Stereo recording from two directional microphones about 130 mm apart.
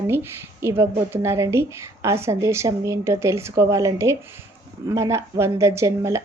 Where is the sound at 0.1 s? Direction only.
20° right (ahead or behind).